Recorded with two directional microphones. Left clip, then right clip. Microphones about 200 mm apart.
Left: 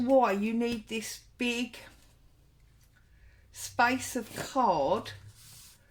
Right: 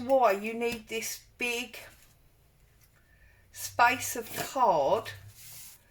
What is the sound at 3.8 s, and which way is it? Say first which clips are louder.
Speech: right 2 dB; 40° left (ahead or behind).